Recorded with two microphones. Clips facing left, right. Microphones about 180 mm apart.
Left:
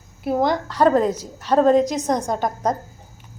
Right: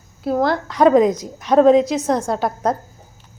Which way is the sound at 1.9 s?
15° left (ahead or behind).